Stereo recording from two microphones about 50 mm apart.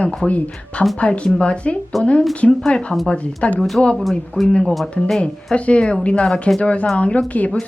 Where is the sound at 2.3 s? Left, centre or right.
Left.